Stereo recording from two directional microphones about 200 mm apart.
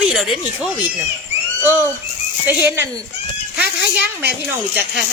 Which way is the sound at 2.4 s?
10° right (ahead or behind).